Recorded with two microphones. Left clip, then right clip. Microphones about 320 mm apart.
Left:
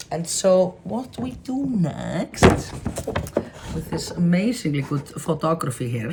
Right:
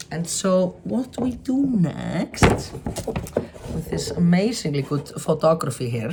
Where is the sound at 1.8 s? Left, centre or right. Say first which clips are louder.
Even; centre.